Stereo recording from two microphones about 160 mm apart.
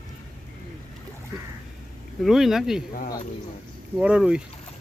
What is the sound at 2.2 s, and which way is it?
Speech, centre (ahead or behind).